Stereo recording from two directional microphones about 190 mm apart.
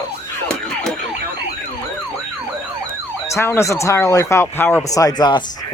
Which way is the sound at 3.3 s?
15° left (ahead or behind).